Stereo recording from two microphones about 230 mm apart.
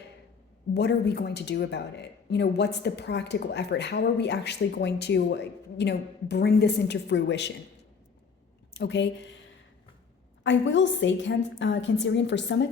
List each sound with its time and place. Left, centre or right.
0.7 s a woman's voice: left
8.7 s speech: left
10.4 s a woman's voice: left